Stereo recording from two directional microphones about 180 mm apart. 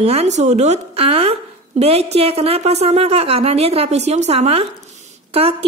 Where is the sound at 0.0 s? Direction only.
35° right (ahead or behind).